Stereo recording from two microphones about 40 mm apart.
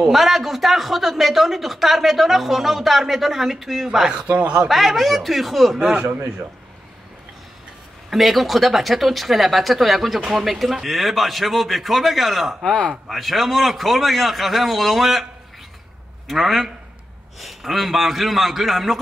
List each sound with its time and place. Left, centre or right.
0.1 s speech: centre
4.3 s speech: right
4.6 s speech: centre
5.8 s a man's voice: right
8.1 s speech: centre
16.3 s speech: centre